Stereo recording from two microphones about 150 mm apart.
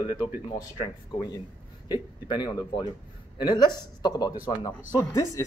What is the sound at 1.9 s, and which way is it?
A man's voice, 30° left (ahead or behind).